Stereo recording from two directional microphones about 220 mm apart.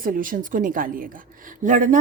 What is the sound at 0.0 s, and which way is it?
A woman's voice, 40° right (ahead or behind).